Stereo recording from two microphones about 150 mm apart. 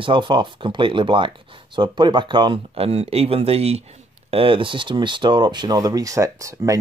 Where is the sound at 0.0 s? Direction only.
35° right (ahead or behind).